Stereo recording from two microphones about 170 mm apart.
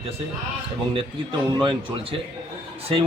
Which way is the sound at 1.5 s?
30° right (ahead or behind).